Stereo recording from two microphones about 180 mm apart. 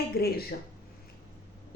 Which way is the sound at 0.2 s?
60° left (ahead or behind).